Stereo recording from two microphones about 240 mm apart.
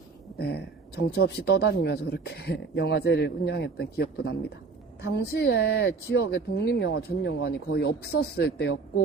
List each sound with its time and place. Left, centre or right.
0.3 s speech: left